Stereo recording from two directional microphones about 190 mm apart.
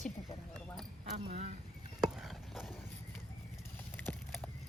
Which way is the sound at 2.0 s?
Centre (ahead or behind).